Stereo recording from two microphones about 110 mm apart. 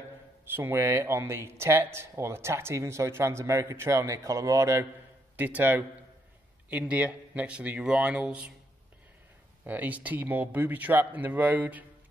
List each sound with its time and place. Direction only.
0.6 s speech: 20° right (ahead or behind)
5.3 s speech: 15° right (ahead or behind)
9.7 s speech: 15° right (ahead or behind)